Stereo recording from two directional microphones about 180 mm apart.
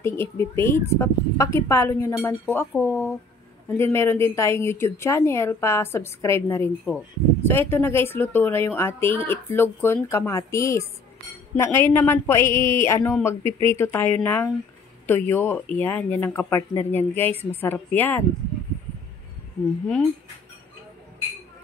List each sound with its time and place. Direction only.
0.0 s a woman's voice: 15° left (ahead or behind)
17.3 s a woman's voice: 35° right (ahead or behind)
17.6 s a woman's voice: 10° left (ahead or behind)